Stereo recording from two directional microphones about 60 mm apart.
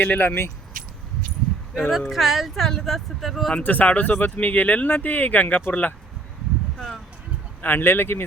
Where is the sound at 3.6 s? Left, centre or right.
Left.